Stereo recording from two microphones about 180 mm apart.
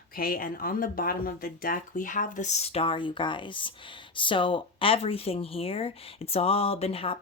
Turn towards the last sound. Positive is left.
turn(degrees=30)  # may be behind; listen again after turning